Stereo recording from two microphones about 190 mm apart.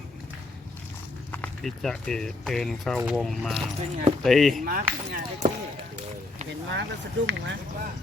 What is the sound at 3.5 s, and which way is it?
Speech, 30° right (ahead or behind).